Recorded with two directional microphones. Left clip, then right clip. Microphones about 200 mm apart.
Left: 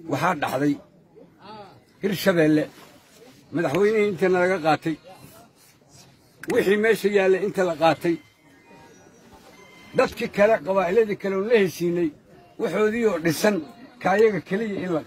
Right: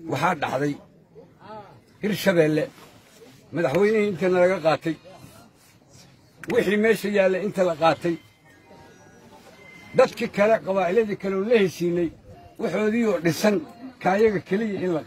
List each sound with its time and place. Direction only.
0.1 s a man's voice: centre (ahead or behind)
2.0 s a man's voice: centre (ahead or behind); by 5.0 s 15° left (ahead or behind)
6.5 s a man's voice: 15° left (ahead or behind)
9.8 s a man's voice: 10° left (ahead or behind)